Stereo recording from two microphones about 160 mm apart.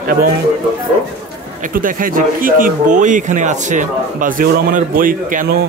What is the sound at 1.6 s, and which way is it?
Speech, 60° right (ahead or behind).